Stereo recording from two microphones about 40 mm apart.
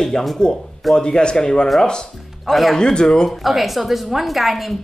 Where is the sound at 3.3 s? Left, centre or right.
Centre.